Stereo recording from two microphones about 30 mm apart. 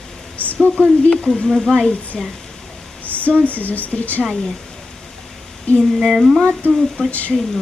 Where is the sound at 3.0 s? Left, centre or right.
Left.